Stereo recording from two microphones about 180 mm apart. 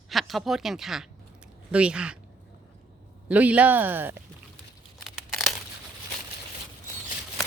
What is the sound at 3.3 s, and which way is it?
Speech, 10° right (ahead or behind).